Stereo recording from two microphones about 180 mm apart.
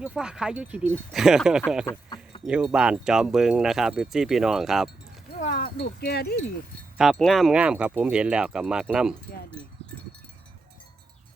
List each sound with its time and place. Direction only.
0.0 s speech: 5° right (ahead or behind)
1.9 s speech: 15° left (ahead or behind)
2.4 s speech: 5° right (ahead or behind)
5.4 s wind chime: 50° left (ahead or behind)
6.9 s speech: centre (ahead or behind)